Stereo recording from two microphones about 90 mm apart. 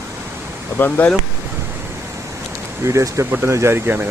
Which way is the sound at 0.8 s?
20° left (ahead or behind).